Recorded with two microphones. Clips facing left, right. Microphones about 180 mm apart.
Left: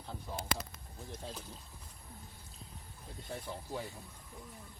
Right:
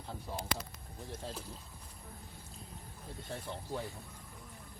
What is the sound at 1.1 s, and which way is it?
Boat, 5° right (ahead or behind).